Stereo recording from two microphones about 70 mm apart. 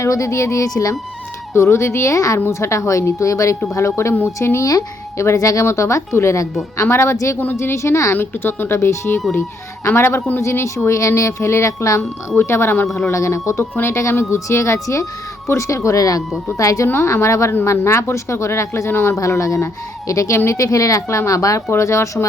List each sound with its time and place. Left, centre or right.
0.0 s speech: left
1.5 s speech: left
8.1 s speech: left
16.8 s speech: left
19.1 s speech: left